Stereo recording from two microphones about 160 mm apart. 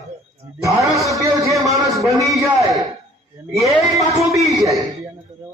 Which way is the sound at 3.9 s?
20° right (ahead or behind).